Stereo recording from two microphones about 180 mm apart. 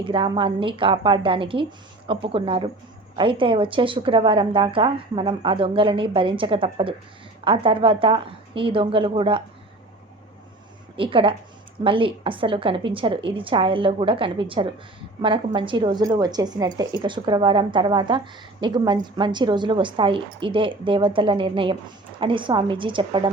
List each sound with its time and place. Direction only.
0.0 s a woman's voice: 30° right (ahead or behind)
10.9 s a woman's voice: 30° right (ahead or behind)